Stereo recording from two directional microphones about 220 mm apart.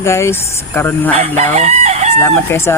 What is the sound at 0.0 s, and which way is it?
Speech, 10° left (ahead or behind).